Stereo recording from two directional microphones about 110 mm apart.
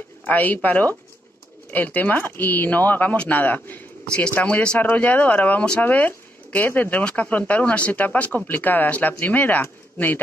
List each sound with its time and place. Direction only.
0.3 s speech: 15° left (ahead or behind)